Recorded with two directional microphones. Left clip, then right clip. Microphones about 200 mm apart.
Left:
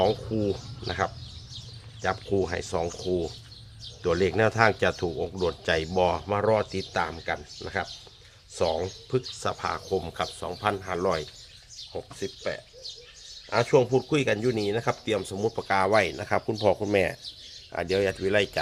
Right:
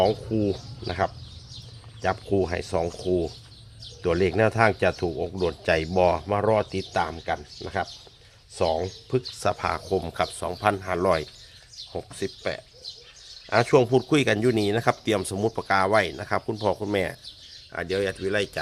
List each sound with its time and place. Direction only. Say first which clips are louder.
0.0 s speech: right 2 dB; 15° right (ahead or behind); by 15.6 s 35° right (ahead or behind)
15.6 s speech: right 2 dB; 20° right (ahead or behind)
15.9 s speech: right 1 dB; 5° right (ahead or behind)